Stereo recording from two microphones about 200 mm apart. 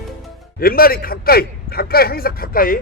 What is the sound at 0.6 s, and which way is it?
Speech, 45° left (ahead or behind).